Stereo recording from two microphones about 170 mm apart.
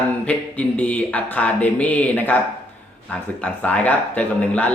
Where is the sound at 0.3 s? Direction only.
10° left (ahead or behind).